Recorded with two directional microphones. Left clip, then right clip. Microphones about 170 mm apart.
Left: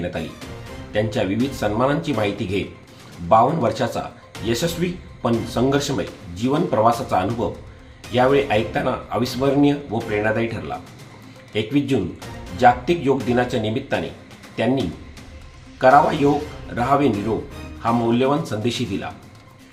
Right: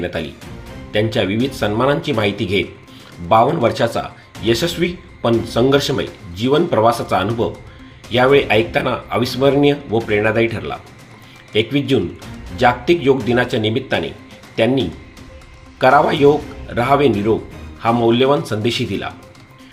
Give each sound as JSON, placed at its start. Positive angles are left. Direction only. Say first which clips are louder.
{"t": 0.0, "sound": "speech", "louder": "right 4 dB", "side_deg": -20}
{"t": 15.8, "sound": "speech", "louder": "right 3 dB", "side_deg": -20}